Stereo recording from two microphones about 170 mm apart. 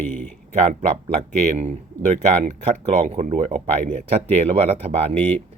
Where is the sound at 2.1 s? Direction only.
45° right (ahead or behind).